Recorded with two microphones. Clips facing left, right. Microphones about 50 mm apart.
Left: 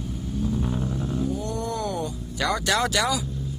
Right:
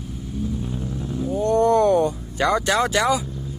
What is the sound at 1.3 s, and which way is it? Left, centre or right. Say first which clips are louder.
Vehicle: right 11 dB; right.